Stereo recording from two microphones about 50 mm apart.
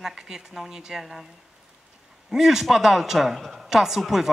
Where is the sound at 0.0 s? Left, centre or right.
Centre.